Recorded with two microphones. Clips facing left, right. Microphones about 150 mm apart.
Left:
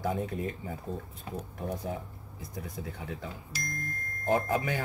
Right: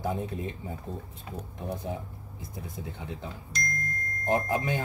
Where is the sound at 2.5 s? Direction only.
25° right (ahead or behind).